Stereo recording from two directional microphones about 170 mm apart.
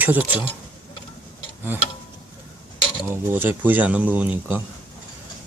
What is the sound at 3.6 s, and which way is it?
Speech, 10° right (ahead or behind).